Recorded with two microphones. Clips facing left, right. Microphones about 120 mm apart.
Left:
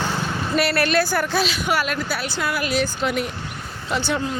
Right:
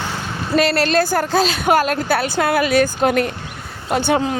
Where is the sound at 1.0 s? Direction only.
45° right (ahead or behind).